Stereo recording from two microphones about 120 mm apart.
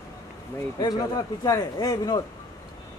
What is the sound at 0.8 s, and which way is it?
Speech, 30° left (ahead or behind).